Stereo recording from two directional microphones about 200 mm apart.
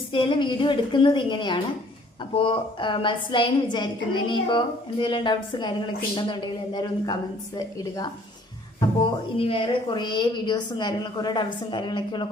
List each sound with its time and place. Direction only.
0.1 s a woman's voice: 25° left (ahead or behind)
9.4 s a woman's voice: 25° left (ahead or behind)